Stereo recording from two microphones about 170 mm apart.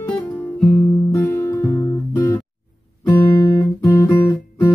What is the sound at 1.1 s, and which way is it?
Music, 15° left (ahead or behind).